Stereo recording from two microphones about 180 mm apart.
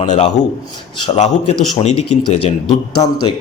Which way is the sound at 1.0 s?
35° left (ahead or behind).